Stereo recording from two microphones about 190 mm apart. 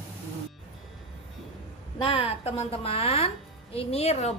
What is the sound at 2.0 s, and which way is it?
Speech, 30° left (ahead or behind).